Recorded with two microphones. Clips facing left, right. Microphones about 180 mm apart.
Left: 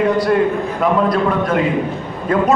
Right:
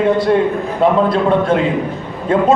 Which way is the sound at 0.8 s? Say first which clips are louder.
Right 3 dB; 30° right (ahead or behind).